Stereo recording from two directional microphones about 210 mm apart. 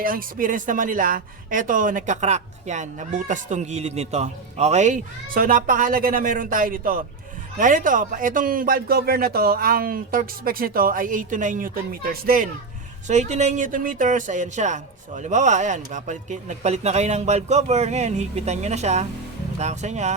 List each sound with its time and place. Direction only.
0.0 s speech: 40° right (ahead or behind)
13.1 s speech: 35° right (ahead or behind)